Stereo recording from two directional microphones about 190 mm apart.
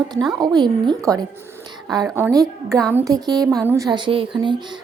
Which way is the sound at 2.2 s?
15° right (ahead or behind).